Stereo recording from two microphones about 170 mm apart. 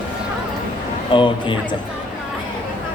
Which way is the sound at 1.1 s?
30° left (ahead or behind).